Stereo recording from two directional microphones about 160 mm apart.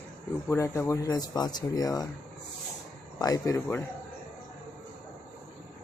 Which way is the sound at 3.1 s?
25° left (ahead or behind).